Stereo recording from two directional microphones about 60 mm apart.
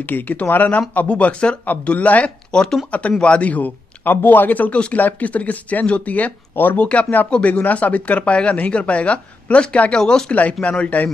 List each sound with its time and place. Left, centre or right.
0.0 s speech: left
6.8 s speech: left
10.3 s speech: left